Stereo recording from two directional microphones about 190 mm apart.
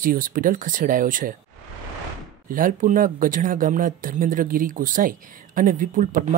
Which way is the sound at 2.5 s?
45° right (ahead or behind).